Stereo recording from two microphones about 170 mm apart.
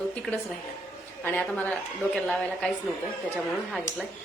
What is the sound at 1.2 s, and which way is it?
A woman's voice, 10° left (ahead or behind).